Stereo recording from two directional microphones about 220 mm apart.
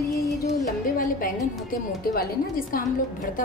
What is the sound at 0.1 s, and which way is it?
Music, 15° left (ahead or behind).